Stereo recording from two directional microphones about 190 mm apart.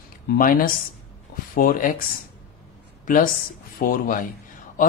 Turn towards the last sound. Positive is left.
turn(degrees=45)  # may be behind; listen again after turning